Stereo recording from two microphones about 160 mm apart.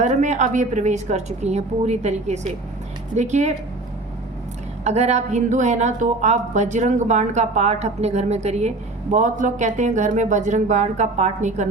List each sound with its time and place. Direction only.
0.0 s a woman's voice: 50° right (ahead or behind)
4.8 s a woman's voice: 45° right (ahead or behind)